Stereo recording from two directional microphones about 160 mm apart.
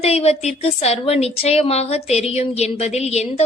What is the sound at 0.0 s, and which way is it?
A woman's voice, 40° left (ahead or behind).